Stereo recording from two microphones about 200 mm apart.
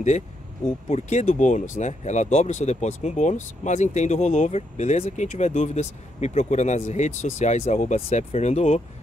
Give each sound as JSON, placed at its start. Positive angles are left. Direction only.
{"t": 0.7, "sound": "speech", "side_deg": 35}